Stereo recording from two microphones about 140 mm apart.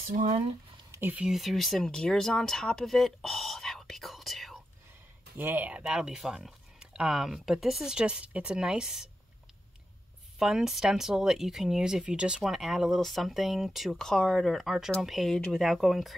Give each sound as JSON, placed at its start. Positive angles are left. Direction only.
{"t": 0.0, "sound": "speech", "side_deg": -65}
{"t": 0.9, "sound": "speech", "side_deg": -10}
{"t": 5.4, "sound": "speech", "side_deg": -15}
{"t": 10.4, "sound": "speech", "side_deg": -5}